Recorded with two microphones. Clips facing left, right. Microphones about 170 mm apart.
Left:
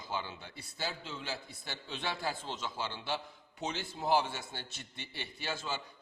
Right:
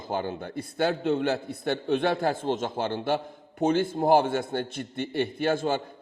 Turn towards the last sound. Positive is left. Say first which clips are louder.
# right 14 dB
turn(degrees=-55)  # may be behind; listen again after turning